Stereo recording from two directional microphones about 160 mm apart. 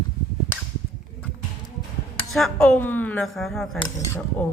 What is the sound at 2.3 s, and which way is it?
A man's voice, 5° left (ahead or behind).